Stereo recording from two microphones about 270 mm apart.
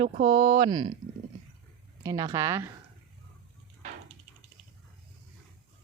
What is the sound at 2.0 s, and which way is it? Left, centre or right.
Speech, centre.